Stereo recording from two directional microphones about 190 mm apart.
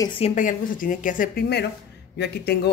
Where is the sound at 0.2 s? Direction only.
45° left (ahead or behind).